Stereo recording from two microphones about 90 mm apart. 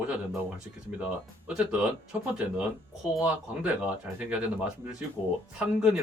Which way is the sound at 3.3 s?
15° right (ahead or behind).